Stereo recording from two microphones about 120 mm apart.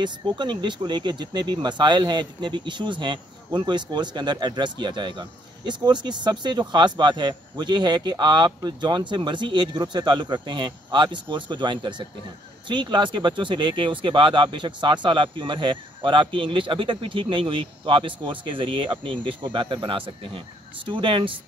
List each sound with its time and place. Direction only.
0.0 s speech: 40° right (ahead or behind)